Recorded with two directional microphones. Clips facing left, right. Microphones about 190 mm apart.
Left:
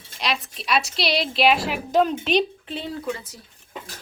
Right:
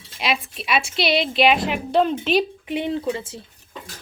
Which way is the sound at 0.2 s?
5° right (ahead or behind).